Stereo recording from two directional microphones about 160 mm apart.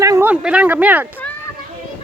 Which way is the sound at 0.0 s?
20° right (ahead or behind).